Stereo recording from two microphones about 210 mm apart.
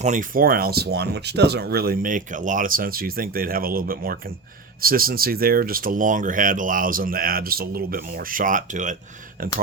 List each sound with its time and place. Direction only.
0.0 s speech: 35° right (ahead or behind)